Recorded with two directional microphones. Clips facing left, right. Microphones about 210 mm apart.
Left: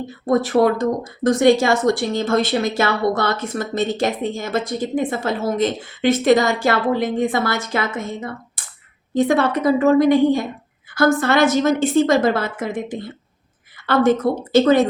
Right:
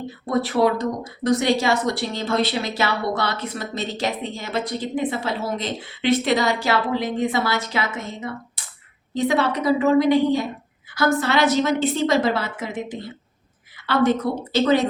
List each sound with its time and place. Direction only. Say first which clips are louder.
0.3 s speech: left 4 dB; 50° left (ahead or behind)